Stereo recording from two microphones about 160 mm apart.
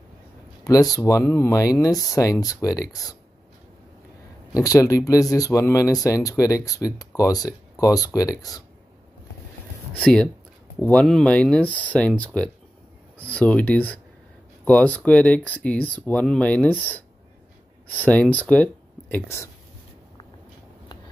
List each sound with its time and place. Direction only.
0.9 s speech: 20° left (ahead or behind)
4.6 s speech: 20° left (ahead or behind)
9.9 s speech: 5° left (ahead or behind)